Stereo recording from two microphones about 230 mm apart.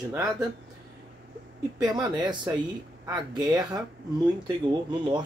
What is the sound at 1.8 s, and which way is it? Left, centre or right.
Speech, centre.